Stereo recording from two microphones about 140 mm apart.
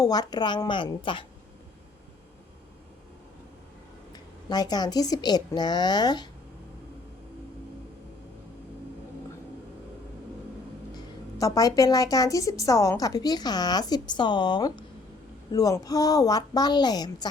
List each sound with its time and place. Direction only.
0.0 s a woman's voice: 30° left (ahead or behind)
4.1 s speech: 30° left (ahead or behind)
10.9 s speech: 25° left (ahead or behind)